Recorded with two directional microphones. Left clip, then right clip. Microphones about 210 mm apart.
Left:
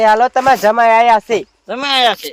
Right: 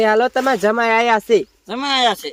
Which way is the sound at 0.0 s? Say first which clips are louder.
Left 5 dB; 10° right (ahead or behind).